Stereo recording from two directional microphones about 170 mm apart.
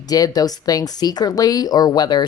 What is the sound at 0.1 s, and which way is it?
Speech, 20° left (ahead or behind).